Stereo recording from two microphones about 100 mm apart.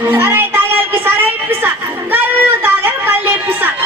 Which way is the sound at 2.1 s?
20° right (ahead or behind).